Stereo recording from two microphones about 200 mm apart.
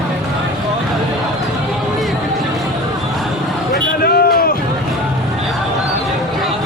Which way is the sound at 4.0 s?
50° left (ahead or behind).